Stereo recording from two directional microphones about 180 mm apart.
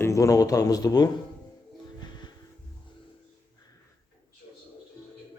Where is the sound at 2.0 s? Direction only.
25° left (ahead or behind).